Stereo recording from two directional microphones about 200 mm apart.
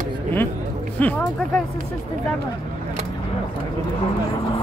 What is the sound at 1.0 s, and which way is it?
Music, 10° left (ahead or behind).